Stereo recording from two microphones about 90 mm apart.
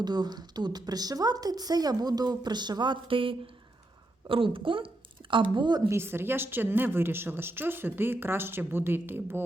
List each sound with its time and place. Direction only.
0.0 s a woman's voice: 50° right (ahead or behind); by 4.9 s 75° right (ahead or behind)
5.3 s speech: 60° right (ahead or behind)
5.9 s a woman's voice: 25° right (ahead or behind)